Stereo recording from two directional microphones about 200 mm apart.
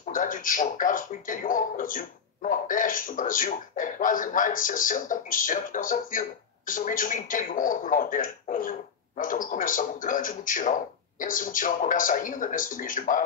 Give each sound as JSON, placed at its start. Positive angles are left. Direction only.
{"t": 0.0, "sound": "speech", "side_deg": 40}